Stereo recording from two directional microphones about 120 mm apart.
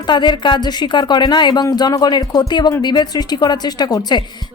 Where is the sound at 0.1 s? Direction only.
40° left (ahead or behind).